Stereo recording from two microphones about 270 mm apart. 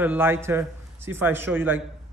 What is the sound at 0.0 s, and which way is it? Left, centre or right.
A man's voice, centre.